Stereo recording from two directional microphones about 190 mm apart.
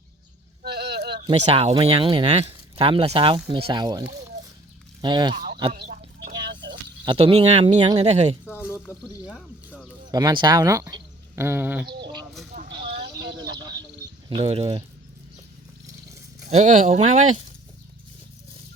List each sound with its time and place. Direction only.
0.6 s a sound: 60° right (ahead or behind)
1.3 s speech: 30° right (ahead or behind)
7.0 s speech: 25° right (ahead or behind)
8.4 s a sound: 10° left (ahead or behind)
9.2 s speech: 5° right (ahead or behind)
10.1 s speech: 20° right (ahead or behind)
12.5 s a sound: 50° right (ahead or behind)
14.3 s speech: 30° right (ahead or behind)
16.5 s speech: 40° right (ahead or behind)